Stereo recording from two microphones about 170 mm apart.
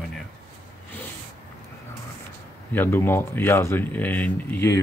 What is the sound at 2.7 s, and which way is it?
Speech, 15° left (ahead or behind).